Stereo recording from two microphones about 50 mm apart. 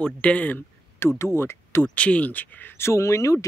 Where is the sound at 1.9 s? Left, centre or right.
Left.